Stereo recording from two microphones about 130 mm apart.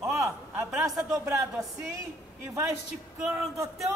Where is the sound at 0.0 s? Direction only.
20° right (ahead or behind).